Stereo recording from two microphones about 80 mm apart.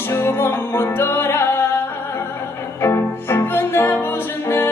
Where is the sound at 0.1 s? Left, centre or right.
Left.